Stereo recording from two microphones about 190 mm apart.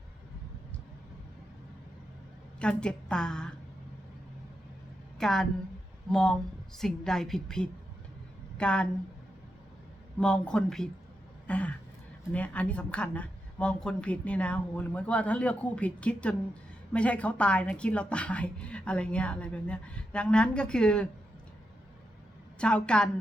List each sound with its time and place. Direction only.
2.6 s a woman's voice: 5° left (ahead or behind)
5.2 s a woman's voice: centre (ahead or behind)
10.2 s a woman's voice: 5° left (ahead or behind)
11.4 s a sound: 5° left (ahead or behind)
12.3 s a woman's voice: 5° left (ahead or behind)
22.5 s a woman's voice: 5° left (ahead or behind)